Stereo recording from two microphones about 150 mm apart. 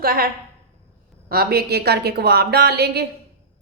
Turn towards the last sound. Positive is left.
turn(degrees=-90)